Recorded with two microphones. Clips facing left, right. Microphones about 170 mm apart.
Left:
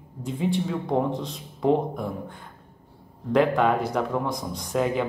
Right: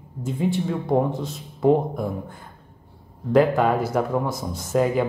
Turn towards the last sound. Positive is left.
turn(degrees=-5)  # may be behind; listen again after turning